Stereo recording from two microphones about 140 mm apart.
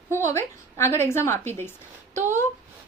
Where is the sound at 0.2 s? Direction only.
20° left (ahead or behind).